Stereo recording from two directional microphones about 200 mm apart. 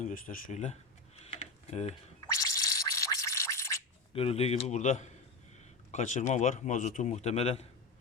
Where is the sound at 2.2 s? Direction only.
15° left (ahead or behind).